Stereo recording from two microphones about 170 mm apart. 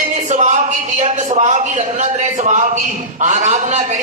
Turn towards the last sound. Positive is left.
turn(degrees=-45)  # may be behind; listen again after turning